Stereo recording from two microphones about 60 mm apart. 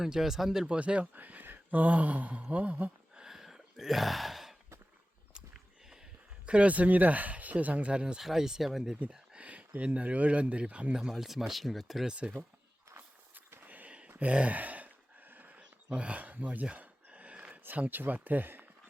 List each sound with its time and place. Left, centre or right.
0.0 s speech: centre
0.8 s speech: centre
1.1 s speech: right
3.2 s a sound: centre
6.4 s speech: centre
9.1 s speech: centre
10.9 s speech: centre
12.0 s speech: centre
13.0 s a sound: right
17.6 s speech: right